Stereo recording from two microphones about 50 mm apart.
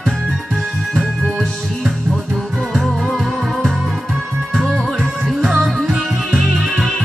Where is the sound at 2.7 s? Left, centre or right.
Centre.